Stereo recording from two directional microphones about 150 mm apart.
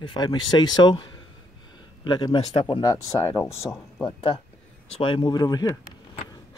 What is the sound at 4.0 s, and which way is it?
Speech, 35° left (ahead or behind).